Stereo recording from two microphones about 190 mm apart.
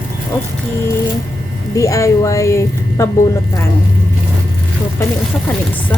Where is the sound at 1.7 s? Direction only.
15° left (ahead or behind).